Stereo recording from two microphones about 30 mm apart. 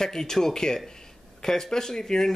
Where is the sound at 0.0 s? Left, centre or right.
Centre.